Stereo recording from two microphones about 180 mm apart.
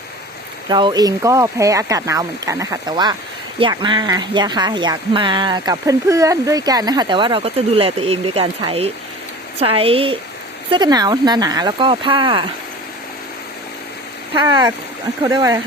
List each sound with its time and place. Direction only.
0.7 s speech: 25° right (ahead or behind)
14.3 s speech: 20° right (ahead or behind)